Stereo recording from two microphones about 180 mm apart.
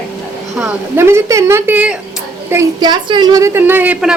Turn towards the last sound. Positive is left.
turn(degrees=-10)  # may be behind; listen again after turning